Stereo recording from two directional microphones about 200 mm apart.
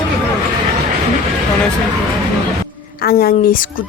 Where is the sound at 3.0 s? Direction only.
50° left (ahead or behind).